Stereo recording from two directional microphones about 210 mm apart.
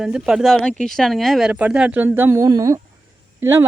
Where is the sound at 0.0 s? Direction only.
5° right (ahead or behind).